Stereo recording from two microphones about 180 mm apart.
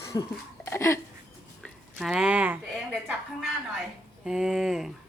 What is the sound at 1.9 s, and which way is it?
Speech, 5° right (ahead or behind).